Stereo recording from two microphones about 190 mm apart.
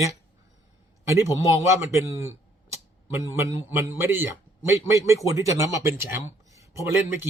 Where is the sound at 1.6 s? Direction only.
15° right (ahead or behind).